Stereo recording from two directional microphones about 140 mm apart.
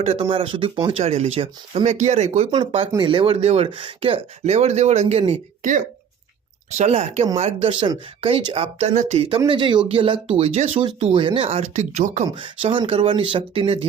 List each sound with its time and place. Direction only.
0.0 s speech: 45° right (ahead or behind)
6.7 s speech: 50° right (ahead or behind)
7.7 s speech: 35° right (ahead or behind); by 12.2 s 55° right (ahead or behind)
12.3 s speech: 35° right (ahead or behind)